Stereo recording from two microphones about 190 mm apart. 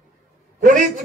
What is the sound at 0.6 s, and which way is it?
Speech, 40° right (ahead or behind).